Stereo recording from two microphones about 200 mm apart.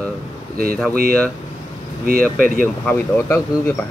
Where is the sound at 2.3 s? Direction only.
45° right (ahead or behind).